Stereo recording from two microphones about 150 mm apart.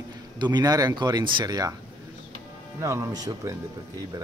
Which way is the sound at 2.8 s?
20° right (ahead or behind).